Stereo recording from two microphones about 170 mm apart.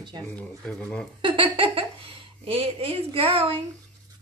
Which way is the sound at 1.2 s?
30° right (ahead or behind).